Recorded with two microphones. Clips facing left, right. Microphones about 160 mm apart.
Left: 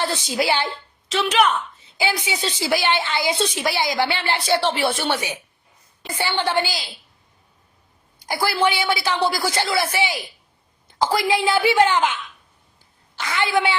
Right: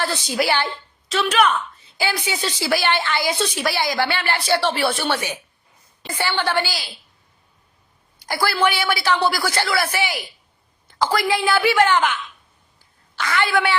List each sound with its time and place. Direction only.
0.0 s a woman's voice: 20° left (ahead or behind)
8.3 s a woman's voice: 20° left (ahead or behind)